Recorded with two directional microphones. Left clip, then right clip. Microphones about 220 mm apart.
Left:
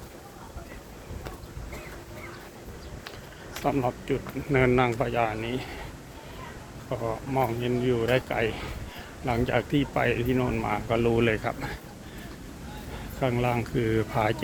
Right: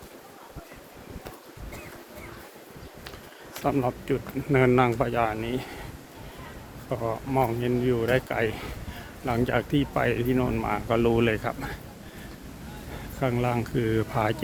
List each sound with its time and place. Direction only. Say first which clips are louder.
3.6 s speech: right 1 dB; 20° right (ahead or behind)
6.9 s speech: right 2 dB; 25° right (ahead or behind)
11.2 s speech: even; 10° right (ahead or behind)
13.1 s speech: even; 10° right (ahead or behind)